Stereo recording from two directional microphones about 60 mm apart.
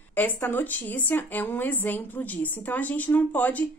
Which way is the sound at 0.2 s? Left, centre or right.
Left.